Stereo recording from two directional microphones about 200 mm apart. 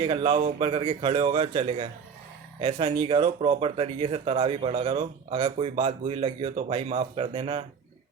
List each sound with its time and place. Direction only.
0.0 s speech: 25° right (ahead or behind)